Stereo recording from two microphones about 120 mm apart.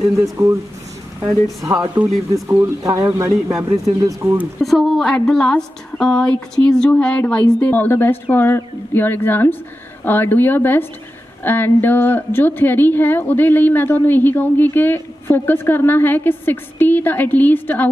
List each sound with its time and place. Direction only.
0.2 s speech: 25° right (ahead or behind)
1.6 s speech: 25° right (ahead or behind)
4.6 s a woman's voice: centre (ahead or behind); by 17.8 s 15° left (ahead or behind)